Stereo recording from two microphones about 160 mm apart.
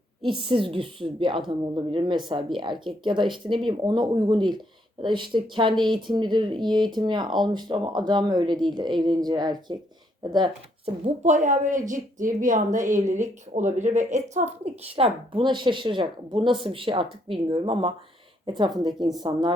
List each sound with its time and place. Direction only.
0.3 s a woman's voice: 35° right (ahead or behind)
11.0 s a woman's voice: 50° right (ahead or behind); by 19.5 s 25° right (ahead or behind)